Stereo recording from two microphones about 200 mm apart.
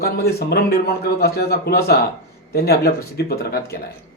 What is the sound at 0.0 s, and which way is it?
Speech, 50° left (ahead or behind).